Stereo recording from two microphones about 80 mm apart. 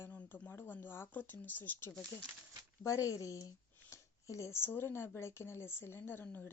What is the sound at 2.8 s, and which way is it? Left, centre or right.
Speech, left.